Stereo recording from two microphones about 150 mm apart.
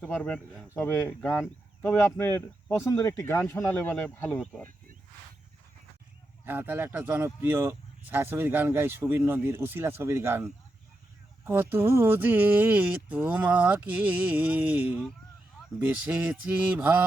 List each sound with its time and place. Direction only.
0.0 s speech: 10° left (ahead or behind)
0.3 s a man's voice: 5° right (ahead or behind)
0.8 s speech: 10° left (ahead or behind)
6.4 s speech: 15° right (ahead or behind)